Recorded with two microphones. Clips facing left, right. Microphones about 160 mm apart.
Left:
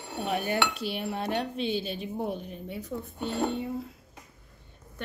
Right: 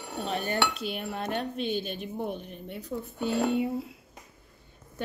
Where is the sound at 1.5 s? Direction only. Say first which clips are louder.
Left 1 dB; 45° right (ahead or behind).